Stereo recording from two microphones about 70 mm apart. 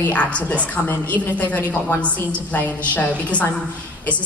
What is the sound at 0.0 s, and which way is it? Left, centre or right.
A woman's voice, centre.